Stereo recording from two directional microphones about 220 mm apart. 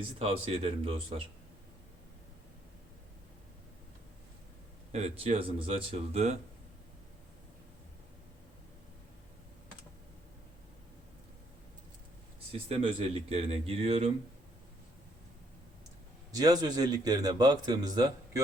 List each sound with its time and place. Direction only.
0.0 s speech: 25° right (ahead or behind)
4.9 s speech: 30° right (ahead or behind)
12.5 s speech: 25° right (ahead or behind)
16.3 s a man's voice: 15° right (ahead or behind)